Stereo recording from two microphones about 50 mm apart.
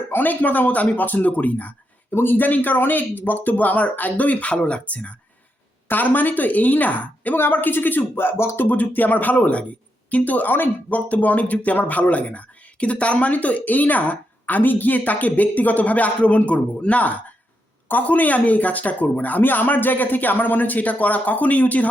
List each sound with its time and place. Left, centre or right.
0.1 s speech: left
5.9 s speech: left
7.3 s speech: left
8.5 s speech: left